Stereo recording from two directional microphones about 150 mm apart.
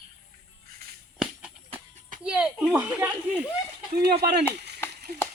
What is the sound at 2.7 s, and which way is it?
Speech, 10° right (ahead or behind).